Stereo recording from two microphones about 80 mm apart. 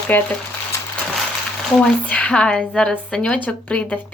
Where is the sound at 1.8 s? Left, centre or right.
Centre.